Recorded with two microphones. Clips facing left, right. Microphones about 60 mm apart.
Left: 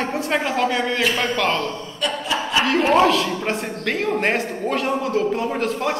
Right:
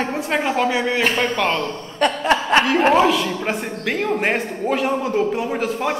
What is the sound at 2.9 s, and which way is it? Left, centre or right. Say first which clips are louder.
A man's voice: even; centre.